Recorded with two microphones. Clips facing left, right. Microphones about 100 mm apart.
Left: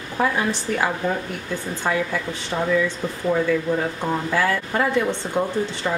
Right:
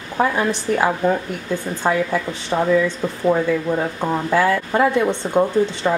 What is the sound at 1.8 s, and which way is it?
A woman's voice, 20° right (ahead or behind).